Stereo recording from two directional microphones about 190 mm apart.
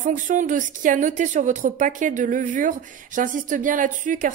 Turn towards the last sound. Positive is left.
turn(degrees=-45)  # may be behind; listen again after turning